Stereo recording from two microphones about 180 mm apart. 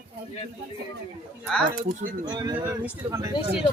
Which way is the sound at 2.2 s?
20° right (ahead or behind).